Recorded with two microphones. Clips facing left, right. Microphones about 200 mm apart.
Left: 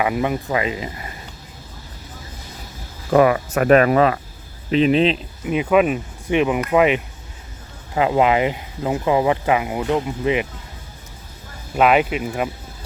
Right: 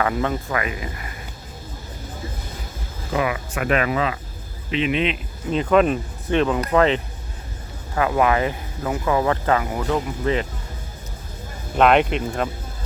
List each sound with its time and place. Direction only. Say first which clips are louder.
0.0 s speech: left 2 dB; 15° left (ahead or behind)
3.1 s speech: left 9 dB; 45° left (ahead or behind)
4.7 s speech: left 6 dB; 35° left (ahead or behind)
5.5 s speech: left 1 dB; 10° left (ahead or behind)
11.8 s speech: even; 5° left (ahead or behind)